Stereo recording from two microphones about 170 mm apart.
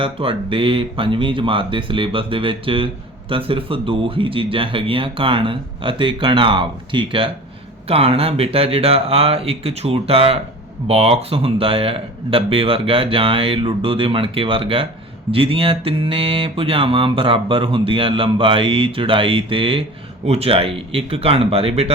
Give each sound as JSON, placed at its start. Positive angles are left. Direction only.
{"t": 0.0, "sound": "speech", "side_deg": -30}